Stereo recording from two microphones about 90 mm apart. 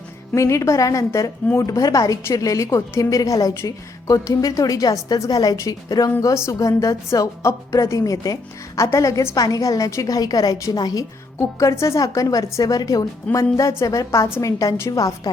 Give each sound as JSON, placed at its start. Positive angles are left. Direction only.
{"t": 0.3, "sound": "a woman's voice", "side_deg": 35}